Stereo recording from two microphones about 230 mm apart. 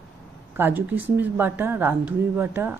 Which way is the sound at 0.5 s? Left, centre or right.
Centre.